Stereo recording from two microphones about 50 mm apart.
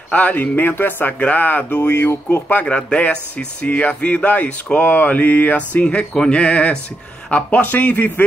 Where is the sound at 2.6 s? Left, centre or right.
Left.